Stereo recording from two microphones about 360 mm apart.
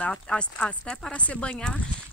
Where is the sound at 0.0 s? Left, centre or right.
Centre.